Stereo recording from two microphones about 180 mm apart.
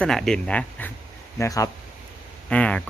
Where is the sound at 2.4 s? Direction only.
5° left (ahead or behind).